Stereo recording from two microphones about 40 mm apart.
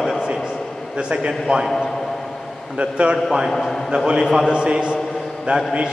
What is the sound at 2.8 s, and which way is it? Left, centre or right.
Speech, right.